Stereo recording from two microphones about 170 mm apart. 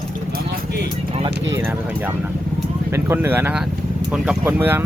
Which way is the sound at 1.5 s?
15° right (ahead or behind).